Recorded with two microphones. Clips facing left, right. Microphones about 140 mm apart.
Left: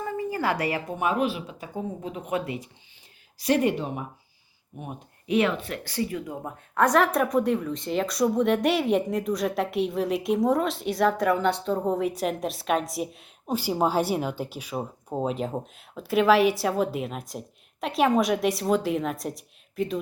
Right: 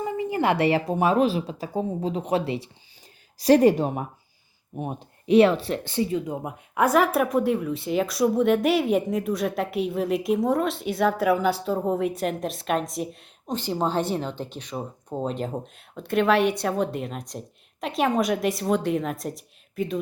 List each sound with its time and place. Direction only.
0.0 s speech: 20° right (ahead or behind); by 4.0 s 45° right (ahead or behind)
4.8 s speech: 30° right (ahead or behind)
6.7 s a woman's voice: 5° right (ahead or behind)